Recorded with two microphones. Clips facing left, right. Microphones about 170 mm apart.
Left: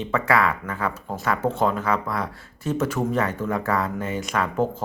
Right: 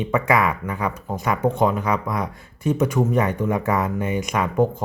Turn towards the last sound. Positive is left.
turn(degrees=-15)  # may be behind; listen again after turning